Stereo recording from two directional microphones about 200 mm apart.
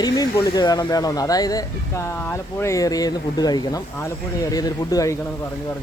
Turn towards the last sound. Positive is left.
turn(degrees=20)  # may be behind; listen again after turning